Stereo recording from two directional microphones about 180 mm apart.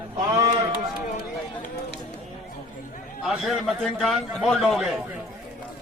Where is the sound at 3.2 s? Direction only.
Centre (ahead or behind).